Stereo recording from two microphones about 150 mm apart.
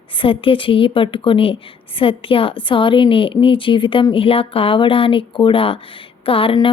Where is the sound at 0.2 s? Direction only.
35° left (ahead or behind).